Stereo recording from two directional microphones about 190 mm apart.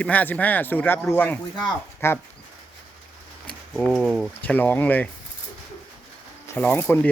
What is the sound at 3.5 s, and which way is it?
Speech, centre (ahead or behind).